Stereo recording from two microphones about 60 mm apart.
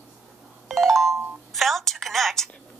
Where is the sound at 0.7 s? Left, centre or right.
Centre.